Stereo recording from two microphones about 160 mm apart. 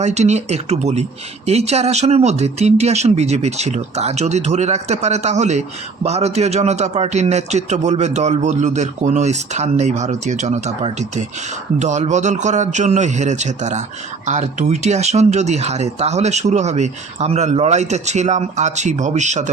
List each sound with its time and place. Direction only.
0.0 s speech: 45° right (ahead or behind)